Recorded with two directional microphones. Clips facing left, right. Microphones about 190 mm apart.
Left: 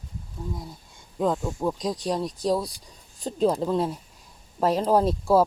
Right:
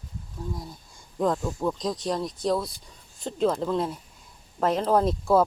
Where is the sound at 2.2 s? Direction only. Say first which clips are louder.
Left 1 dB; 35° left (ahead or behind).